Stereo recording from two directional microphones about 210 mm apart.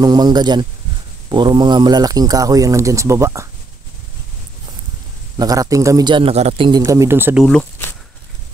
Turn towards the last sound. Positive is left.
turn(degrees=10)  # may be behind; listen again after turning